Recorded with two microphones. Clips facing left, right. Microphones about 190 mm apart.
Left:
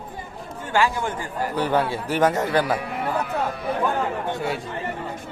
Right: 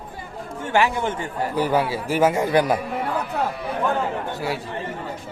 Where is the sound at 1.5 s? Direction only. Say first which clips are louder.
Right 1 dB; 10° right (ahead or behind).